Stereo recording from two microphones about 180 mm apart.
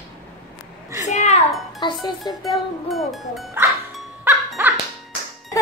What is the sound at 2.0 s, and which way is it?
Speech, 20° left (ahead or behind).